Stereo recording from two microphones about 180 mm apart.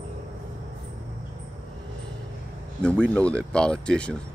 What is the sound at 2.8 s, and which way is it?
A man's voice, 5° left (ahead or behind).